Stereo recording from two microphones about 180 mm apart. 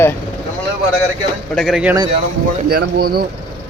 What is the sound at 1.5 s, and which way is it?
Speech, centre (ahead or behind).